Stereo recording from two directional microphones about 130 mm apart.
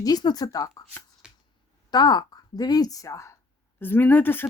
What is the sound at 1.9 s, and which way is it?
A woman's voice, 30° left (ahead or behind).